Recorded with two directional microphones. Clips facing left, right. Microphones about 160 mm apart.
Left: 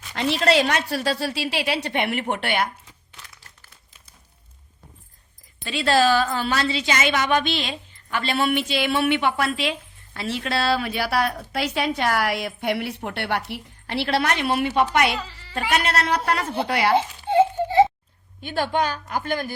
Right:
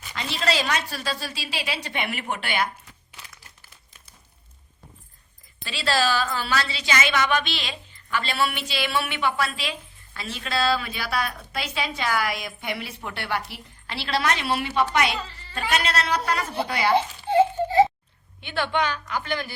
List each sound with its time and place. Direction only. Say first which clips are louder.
0.1 s a woman's voice: left 7 dB; 65° left (ahead or behind)
5.6 s a woman's voice: left 5 dB; 50° left (ahead or behind); by 16.9 s 65° left (ahead or behind)
17.3 s a sound: left 1 dB; 20° left (ahead or behind)
18.3 s a woman's voice: left 2 dB; 45° left (ahead or behind)